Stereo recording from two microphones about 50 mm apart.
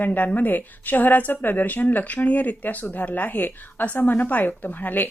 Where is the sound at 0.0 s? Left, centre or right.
Left.